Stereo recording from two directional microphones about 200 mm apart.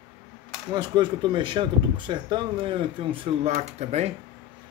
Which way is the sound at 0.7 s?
20° right (ahead or behind).